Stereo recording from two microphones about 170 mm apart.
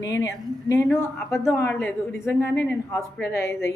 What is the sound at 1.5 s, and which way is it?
A woman's voice, 10° left (ahead or behind).